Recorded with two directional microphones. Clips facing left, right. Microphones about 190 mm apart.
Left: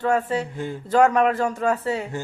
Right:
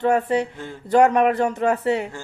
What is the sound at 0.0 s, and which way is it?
Speech, 20° right (ahead or behind).